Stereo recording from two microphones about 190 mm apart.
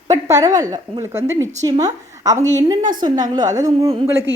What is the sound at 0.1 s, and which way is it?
A woman's voice, 15° right (ahead or behind).